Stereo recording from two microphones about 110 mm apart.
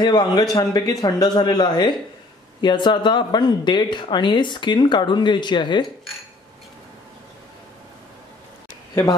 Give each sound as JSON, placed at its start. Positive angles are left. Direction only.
{"t": 0.0, "sound": "a man's voice", "side_deg": 40}